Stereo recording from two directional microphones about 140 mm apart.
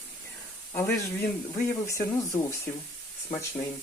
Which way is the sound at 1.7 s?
20° left (ahead or behind).